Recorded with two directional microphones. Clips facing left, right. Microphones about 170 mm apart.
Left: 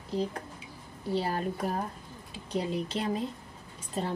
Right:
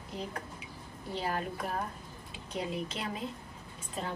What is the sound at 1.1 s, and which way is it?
Speech, 35° left (ahead or behind).